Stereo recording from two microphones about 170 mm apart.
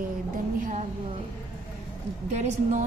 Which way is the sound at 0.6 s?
50° right (ahead or behind).